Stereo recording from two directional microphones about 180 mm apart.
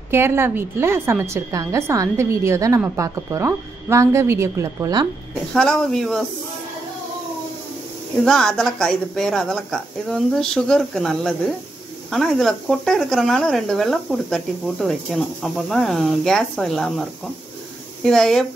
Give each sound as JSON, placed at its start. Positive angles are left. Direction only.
{"t": 0.1, "sound": "a woman's voice", "side_deg": -15}
{"t": 5.5, "sound": "speech", "side_deg": 5}
{"t": 8.2, "sound": "speech", "side_deg": 5}